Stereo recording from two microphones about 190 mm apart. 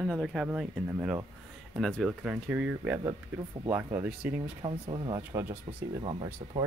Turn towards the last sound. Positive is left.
turn(degrees=-25)  # may be behind; listen again after turning